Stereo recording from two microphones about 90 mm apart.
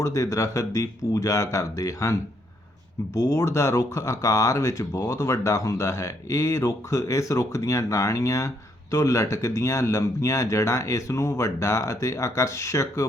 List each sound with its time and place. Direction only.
0.0 s speech: 35° left (ahead or behind)
3.2 s speech: 35° left (ahead or behind)